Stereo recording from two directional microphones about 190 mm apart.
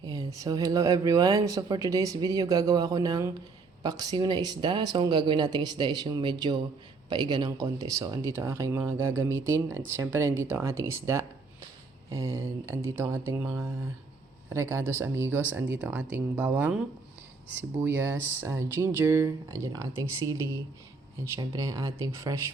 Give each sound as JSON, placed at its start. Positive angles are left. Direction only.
{"t": 0.0, "sound": "speech", "side_deg": -20}